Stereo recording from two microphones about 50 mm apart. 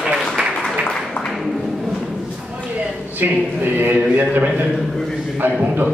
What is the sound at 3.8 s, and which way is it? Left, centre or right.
Speech, right.